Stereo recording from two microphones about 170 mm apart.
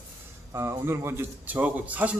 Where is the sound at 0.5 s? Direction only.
15° right (ahead or behind).